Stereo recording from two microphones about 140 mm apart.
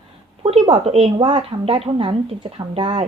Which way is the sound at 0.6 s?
40° right (ahead or behind).